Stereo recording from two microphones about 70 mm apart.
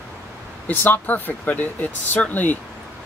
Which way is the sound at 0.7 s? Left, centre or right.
Left.